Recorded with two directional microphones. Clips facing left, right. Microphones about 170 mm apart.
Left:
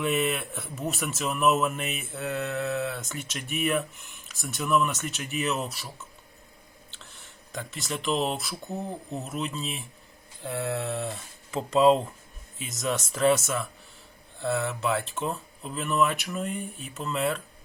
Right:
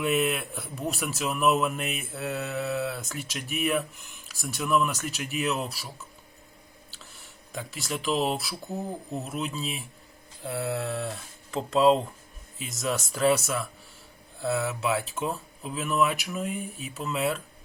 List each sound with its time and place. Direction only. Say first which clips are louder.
0.0 s a man's voice: right 1 dB; centre (ahead or behind)